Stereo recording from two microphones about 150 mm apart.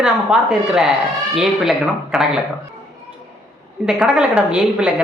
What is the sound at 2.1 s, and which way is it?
Speech, 5° right (ahead or behind).